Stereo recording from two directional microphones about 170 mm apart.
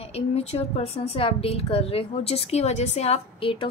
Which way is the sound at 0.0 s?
35° left (ahead or behind).